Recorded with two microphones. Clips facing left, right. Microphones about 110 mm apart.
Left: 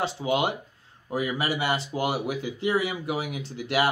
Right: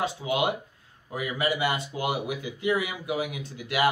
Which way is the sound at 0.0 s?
30° left (ahead or behind).